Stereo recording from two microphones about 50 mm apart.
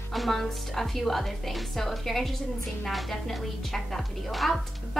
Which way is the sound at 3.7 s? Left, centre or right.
Centre.